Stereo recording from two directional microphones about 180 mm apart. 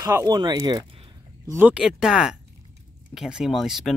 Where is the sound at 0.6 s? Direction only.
25° right (ahead or behind).